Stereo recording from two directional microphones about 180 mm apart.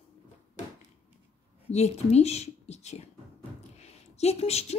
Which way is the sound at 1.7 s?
35° left (ahead or behind).